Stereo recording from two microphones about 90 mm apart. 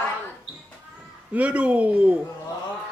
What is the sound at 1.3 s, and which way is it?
Speech, 15° right (ahead or behind).